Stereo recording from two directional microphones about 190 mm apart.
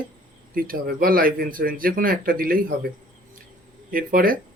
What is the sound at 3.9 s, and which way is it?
Speech, 50° right (ahead or behind).